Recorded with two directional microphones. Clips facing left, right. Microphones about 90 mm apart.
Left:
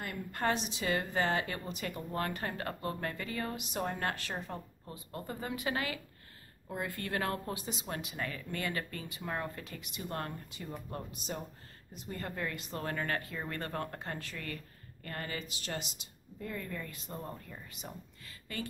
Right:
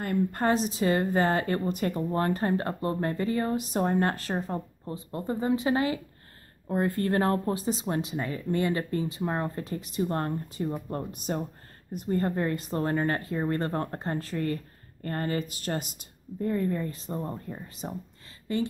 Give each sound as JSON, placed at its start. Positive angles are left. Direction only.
{"t": 0.0, "sound": "a woman's voice", "side_deg": -40}
{"t": 6.7, "sound": "a woman's voice", "side_deg": -40}